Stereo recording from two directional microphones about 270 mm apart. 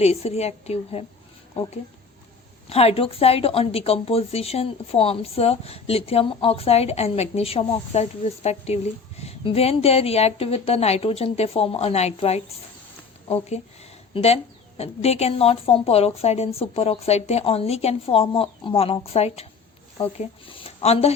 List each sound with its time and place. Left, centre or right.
0.0 s a woman's voice: left
2.6 s a woman's voice: left